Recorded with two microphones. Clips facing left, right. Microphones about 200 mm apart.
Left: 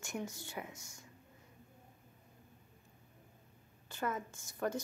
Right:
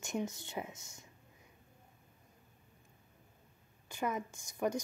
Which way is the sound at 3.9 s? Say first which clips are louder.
Right 2 dB; 15° right (ahead or behind).